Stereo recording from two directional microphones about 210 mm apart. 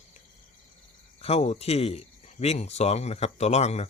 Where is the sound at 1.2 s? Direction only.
30° left (ahead or behind).